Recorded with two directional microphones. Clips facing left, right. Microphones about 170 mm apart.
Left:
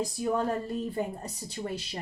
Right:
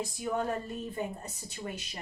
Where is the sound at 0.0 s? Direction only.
35° left (ahead or behind).